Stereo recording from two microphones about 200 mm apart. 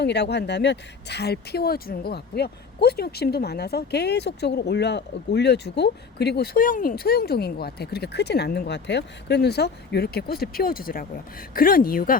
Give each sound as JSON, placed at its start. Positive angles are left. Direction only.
{"t": 0.0, "sound": "a woman's voice", "side_deg": 60}